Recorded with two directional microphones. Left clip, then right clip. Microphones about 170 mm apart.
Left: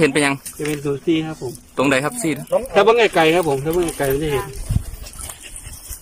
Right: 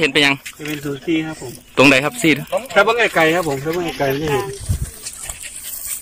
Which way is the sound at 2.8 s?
20° left (ahead or behind).